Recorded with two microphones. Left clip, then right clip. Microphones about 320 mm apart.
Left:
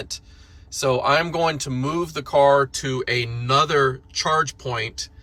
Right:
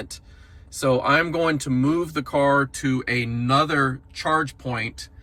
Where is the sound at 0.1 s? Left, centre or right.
Centre.